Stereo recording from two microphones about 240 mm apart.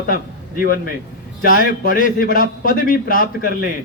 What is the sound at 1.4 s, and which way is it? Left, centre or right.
A man's voice, left.